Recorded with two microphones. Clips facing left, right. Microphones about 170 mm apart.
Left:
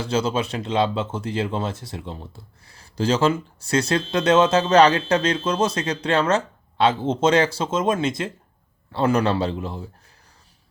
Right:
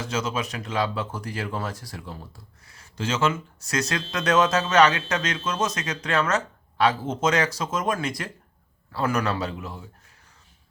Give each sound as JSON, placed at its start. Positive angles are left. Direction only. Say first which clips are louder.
{"t": 0.0, "sound": "speech", "louder": "left 5 dB", "side_deg": 30}